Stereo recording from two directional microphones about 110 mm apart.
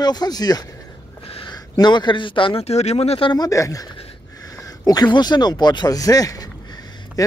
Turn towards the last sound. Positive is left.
turn(degrees=35)  # may be behind; listen again after turning